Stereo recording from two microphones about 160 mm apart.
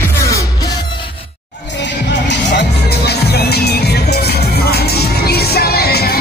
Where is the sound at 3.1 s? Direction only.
85° left.